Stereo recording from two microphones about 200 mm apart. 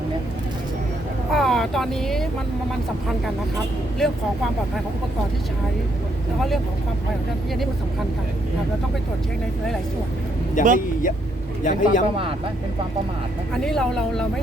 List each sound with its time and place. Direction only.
1.3 s speech: centre (ahead or behind)
4.0 s speech: centre (ahead or behind)
10.6 s speech: 40° left (ahead or behind)
13.7 s speech: centre (ahead or behind)